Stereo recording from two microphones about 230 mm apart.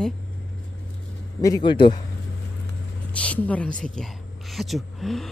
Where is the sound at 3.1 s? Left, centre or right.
Centre.